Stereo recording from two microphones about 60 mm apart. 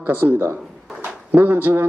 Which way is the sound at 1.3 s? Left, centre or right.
Right.